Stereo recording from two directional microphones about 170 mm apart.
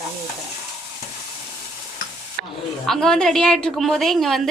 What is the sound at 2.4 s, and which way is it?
Speech, 65° right (ahead or behind).